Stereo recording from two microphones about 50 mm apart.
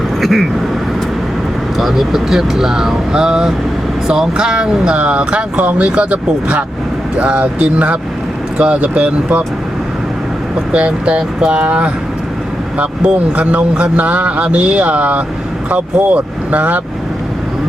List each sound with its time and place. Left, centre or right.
0.2 s speech: centre
1.8 s speech: centre; by 9.4 s right
10.7 s speech: right
13.0 s speech: centre